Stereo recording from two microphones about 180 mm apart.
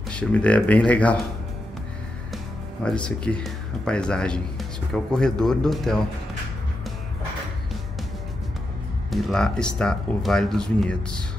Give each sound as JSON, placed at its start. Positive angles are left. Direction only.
{"t": 0.1, "sound": "speech", "side_deg": 5}
{"t": 2.3, "sound": "speech", "side_deg": 5}
{"t": 9.1, "sound": "speech", "side_deg": 5}